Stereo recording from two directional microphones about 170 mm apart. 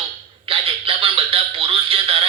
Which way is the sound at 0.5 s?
35° right (ahead or behind).